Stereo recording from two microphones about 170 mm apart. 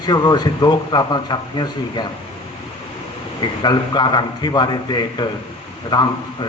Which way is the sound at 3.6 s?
25° left (ahead or behind).